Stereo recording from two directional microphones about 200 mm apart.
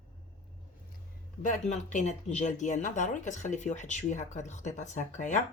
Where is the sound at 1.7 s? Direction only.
35° left (ahead or behind).